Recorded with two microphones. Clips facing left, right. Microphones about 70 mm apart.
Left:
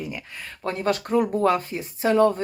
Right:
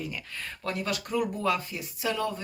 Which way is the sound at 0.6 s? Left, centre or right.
Left.